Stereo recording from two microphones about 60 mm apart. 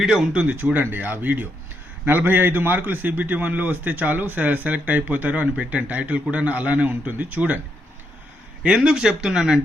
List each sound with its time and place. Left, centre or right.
0.0 s speech: centre
0.3 s a man's voice: right
8.6 s speech: centre